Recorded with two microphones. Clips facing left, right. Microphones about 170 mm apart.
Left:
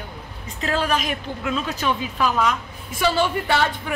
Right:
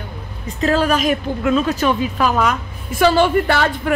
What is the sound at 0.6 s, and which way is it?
A woman's voice, 45° right (ahead or behind).